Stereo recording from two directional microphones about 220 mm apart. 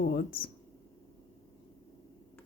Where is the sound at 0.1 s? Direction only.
40° left (ahead or behind).